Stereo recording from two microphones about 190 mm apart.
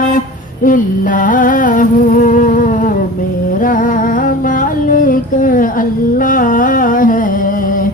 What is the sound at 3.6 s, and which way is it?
Humming, 45° left (ahead or behind).